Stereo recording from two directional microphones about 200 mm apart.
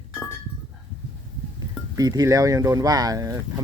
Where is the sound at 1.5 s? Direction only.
20° right (ahead or behind).